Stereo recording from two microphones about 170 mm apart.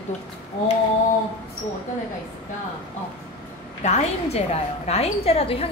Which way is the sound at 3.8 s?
40° left (ahead or behind).